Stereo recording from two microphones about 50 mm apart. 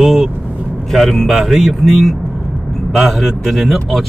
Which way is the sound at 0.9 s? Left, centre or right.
Centre.